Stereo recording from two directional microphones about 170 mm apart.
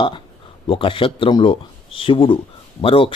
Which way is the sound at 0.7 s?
30° left (ahead or behind).